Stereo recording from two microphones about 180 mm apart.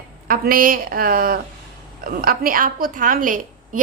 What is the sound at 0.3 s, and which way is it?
A woman's voice, 55° right (ahead or behind).